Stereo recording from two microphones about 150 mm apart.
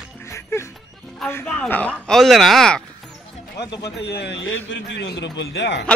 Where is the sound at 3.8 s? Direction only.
90° left.